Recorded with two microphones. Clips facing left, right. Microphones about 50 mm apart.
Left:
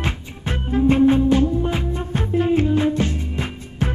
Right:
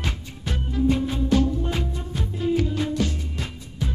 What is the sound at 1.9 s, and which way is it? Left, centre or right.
Music, left.